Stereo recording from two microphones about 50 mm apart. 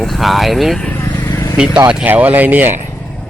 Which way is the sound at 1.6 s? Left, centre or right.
Centre.